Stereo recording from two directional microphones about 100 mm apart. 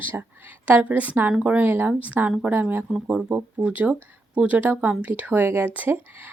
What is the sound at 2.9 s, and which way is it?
Speech, 10° right (ahead or behind).